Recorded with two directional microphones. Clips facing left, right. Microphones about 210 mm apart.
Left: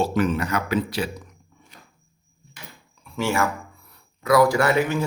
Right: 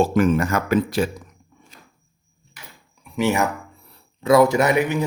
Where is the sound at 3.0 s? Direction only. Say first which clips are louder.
Right 3 dB; 15° right (ahead or behind).